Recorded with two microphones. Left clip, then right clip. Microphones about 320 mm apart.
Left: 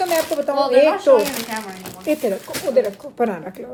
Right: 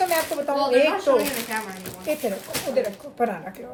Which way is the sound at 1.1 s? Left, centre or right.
Centre.